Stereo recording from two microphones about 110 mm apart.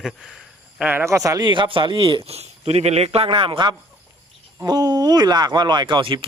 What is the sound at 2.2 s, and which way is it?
Speech, 70° right (ahead or behind).